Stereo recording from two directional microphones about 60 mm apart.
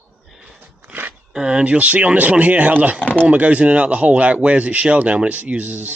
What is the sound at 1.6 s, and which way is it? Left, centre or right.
Speech, right.